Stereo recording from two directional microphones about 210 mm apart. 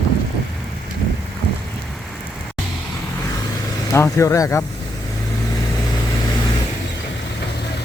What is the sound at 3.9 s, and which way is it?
Speech, 10° left (ahead or behind).